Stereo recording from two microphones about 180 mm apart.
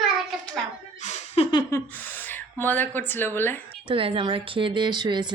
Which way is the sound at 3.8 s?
30° right (ahead or behind).